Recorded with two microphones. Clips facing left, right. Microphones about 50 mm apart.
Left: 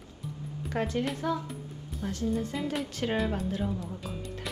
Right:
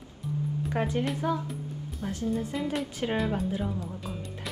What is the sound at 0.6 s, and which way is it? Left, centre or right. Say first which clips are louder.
Speech: even; centre.